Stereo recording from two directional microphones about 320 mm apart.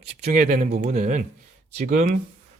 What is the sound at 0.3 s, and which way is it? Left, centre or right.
Speech, right.